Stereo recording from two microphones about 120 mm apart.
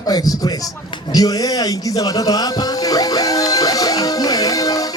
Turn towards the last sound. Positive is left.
turn(degrees=30)  # may be behind; listen again after turning